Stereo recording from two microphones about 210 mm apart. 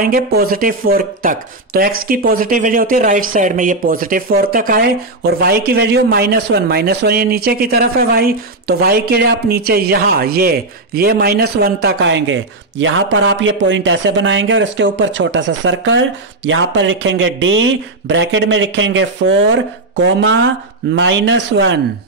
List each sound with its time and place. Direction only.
0.0 s speech: 45° right (ahead or behind); by 21.7 s 60° right (ahead or behind)